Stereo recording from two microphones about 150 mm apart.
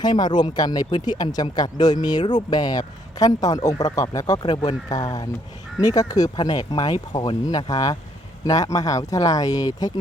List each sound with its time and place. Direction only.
0.0 s speech: 30° left (ahead or behind)